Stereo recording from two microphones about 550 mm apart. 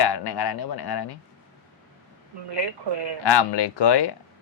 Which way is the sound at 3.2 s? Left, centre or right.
Left.